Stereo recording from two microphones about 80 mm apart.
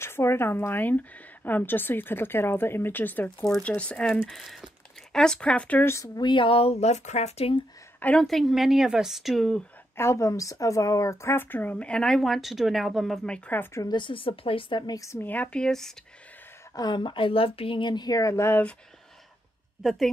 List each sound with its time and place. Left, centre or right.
0.0 s a woman's voice: left; by 4.2 s centre
4.3 s a woman's voice: centre
6.1 s speech: left
8.2 s a woman's voice: centre
9.9 s speech: left
11.5 s a woman's voice: left
13.8 s speech: left
15.0 s speech: left
15.2 s a woman's voice: centre
15.6 s a woman's voice: centre
16.7 s a woman's voice: left
17.0 s speech: left
19.8 s a woman's voice: centre